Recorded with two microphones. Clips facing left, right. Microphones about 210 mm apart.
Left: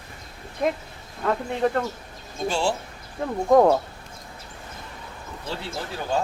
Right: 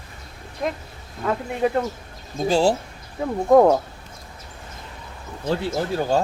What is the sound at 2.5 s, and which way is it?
Speech, 40° right (ahead or behind).